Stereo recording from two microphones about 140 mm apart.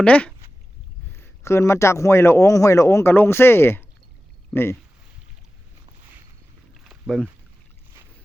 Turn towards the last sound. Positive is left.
turn(degrees=0)  # may be behind; listen again after turning